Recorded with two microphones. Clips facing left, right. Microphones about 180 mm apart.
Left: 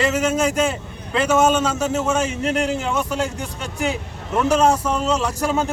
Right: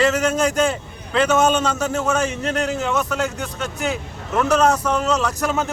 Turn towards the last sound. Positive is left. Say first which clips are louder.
# right 1 dB
turn(degrees=10)  # may be behind; listen again after turning